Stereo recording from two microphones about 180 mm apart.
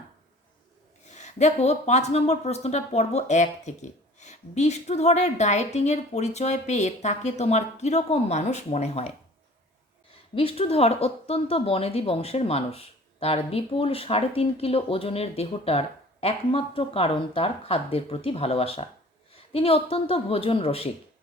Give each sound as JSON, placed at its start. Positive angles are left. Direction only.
{"t": 1.0, "sound": "speech", "side_deg": 40}
{"t": 10.3, "sound": "speech", "side_deg": 35}